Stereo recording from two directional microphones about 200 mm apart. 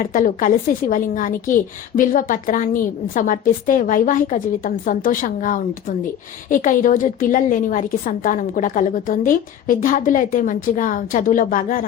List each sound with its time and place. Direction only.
0.0 s a woman's voice: 40° left (ahead or behind)